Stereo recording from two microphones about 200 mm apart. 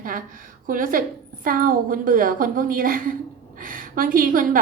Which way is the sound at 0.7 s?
45° right (ahead or behind).